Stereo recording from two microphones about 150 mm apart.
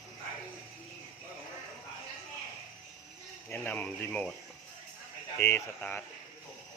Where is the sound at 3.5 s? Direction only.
10° left (ahead or behind).